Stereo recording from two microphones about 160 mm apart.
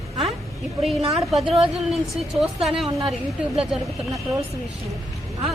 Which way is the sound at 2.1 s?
Centre (ahead or behind).